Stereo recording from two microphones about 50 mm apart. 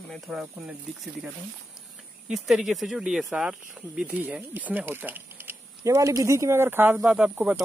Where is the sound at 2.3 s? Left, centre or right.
Centre; by 5.5 s right.